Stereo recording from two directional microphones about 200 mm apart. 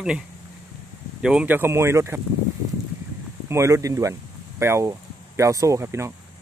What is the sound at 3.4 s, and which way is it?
Speech, 15° right (ahead or behind).